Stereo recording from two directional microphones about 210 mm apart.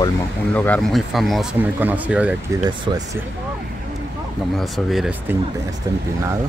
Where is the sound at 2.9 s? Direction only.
20° right (ahead or behind).